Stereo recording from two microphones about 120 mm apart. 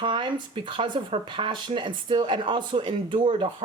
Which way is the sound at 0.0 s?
40° right (ahead or behind).